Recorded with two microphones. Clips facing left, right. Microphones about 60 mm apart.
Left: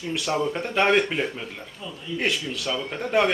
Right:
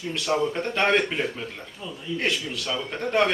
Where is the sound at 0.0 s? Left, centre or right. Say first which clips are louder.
Even; centre.